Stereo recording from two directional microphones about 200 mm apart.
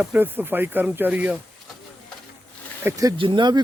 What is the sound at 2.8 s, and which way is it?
Speech, 15° right (ahead or behind).